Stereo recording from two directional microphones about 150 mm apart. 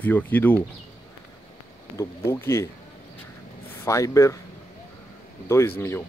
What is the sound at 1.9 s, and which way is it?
Speech, 20° left (ahead or behind).